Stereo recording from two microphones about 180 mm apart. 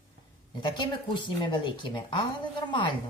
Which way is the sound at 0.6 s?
25° left (ahead or behind).